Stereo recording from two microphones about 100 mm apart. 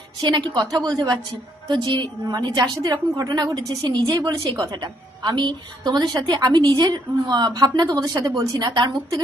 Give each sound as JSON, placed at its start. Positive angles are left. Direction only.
{"t": 0.2, "sound": "a woman's voice", "side_deg": -50}
{"t": 1.6, "sound": "a woman's voice", "side_deg": -50}